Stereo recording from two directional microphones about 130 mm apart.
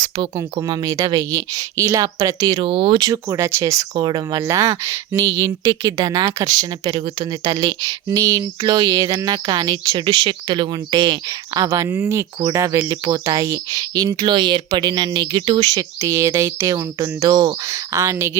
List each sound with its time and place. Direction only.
0.0 s speech: 35° right (ahead or behind)
3.1 s speech: 25° right (ahead or behind)